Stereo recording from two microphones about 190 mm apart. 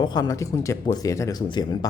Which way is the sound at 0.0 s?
20° left (ahead or behind).